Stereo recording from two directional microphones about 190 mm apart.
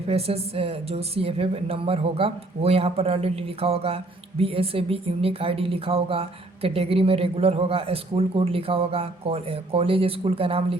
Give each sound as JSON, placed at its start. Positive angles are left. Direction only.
{"t": 0.1, "sound": "speech", "side_deg": -30}